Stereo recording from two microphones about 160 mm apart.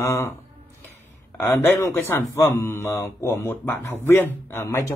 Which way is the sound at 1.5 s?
20° left (ahead or behind).